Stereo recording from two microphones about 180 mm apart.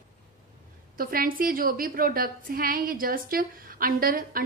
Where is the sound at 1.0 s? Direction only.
55° right (ahead or behind).